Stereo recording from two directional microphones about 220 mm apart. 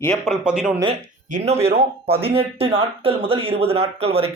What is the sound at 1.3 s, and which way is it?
A man's voice, 35° right (ahead or behind).